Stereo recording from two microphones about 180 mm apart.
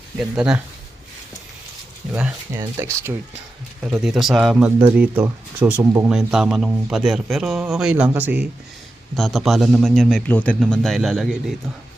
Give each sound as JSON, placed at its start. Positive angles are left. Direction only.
{"t": 0.2, "sound": "a man's voice", "side_deg": -5}
{"t": 2.1, "sound": "speech", "side_deg": -5}
{"t": 3.8, "sound": "a man's voice", "side_deg": 0}